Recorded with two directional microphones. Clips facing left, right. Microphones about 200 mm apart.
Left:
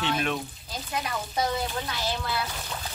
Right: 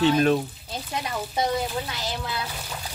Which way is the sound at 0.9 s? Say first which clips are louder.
Right 1 dB; 20° right (ahead or behind).